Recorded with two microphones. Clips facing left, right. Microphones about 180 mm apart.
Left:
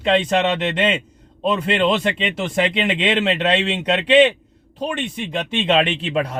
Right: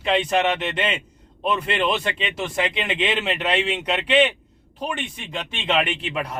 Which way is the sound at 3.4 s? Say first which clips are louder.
Left 4 dB; 20° left (ahead or behind).